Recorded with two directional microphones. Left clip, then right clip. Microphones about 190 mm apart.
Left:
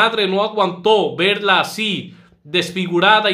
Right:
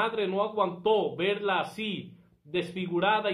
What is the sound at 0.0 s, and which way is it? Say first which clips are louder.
Speech: left 12 dB; 20° left (ahead or behind).